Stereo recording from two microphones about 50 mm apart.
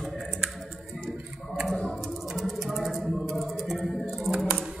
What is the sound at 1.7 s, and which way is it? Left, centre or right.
Typing, centre.